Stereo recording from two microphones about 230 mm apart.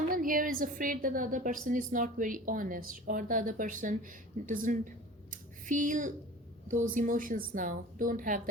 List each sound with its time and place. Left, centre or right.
0.1 s a woman's voice: right
5.3 s a sound: right
6.7 s a woman's voice: right